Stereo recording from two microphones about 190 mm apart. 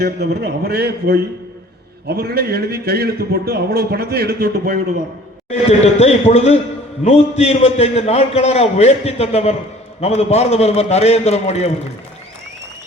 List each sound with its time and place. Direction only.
0.0 s a man's voice: 60° right (ahead or behind)
5.5 s a man's voice: 35° left (ahead or behind)